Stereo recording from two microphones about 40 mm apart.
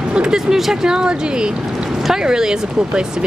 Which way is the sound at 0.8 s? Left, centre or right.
Right.